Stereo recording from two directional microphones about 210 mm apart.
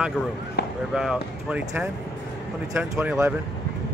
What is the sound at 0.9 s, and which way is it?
Speech, 5° right (ahead or behind).